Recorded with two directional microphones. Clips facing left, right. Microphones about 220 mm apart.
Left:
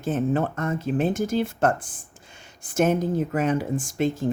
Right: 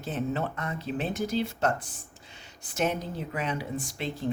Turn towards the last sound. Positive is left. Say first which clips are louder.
# left 9 dB
turn(degrees=45)  # may be behind; listen again after turning